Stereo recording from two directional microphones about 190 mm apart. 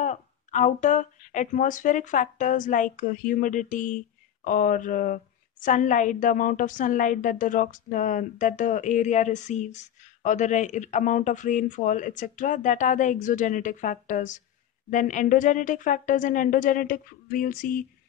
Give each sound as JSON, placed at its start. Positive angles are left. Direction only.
{"t": 0.0, "sound": "a woman's voice", "side_deg": 40}